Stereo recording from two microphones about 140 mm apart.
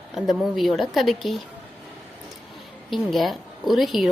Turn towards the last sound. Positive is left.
turn(degrees=0)  # may be behind; listen again after turning